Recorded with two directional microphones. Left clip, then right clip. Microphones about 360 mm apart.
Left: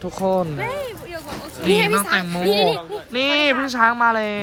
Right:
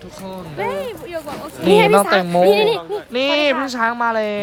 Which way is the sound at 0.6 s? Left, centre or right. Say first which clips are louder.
Right 3 dB; right.